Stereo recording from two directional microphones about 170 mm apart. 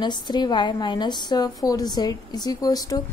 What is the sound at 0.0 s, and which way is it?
A woman's voice, 25° left (ahead or behind).